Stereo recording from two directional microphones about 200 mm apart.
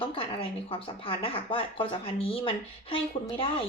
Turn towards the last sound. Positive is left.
turn(degrees=25)  # may be behind; listen again after turning